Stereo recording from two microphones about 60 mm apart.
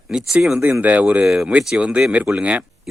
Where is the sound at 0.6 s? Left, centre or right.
Right.